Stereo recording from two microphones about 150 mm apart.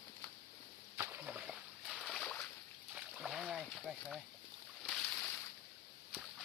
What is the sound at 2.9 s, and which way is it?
Splash, 5° right (ahead or behind).